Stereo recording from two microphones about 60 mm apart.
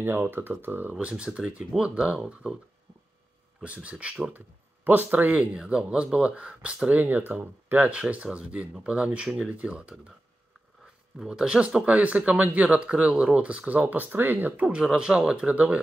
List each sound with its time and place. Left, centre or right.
0.0 s speech: right
0.9 s speech: centre
3.6 s speech: right
5.5 s speech: centre
7.0 s speech: right
11.1 s speech: centre; by 14.7 s right
14.7 s speech: centre